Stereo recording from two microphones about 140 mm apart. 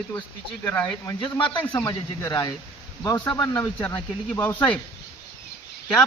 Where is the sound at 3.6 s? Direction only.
15° left (ahead or behind).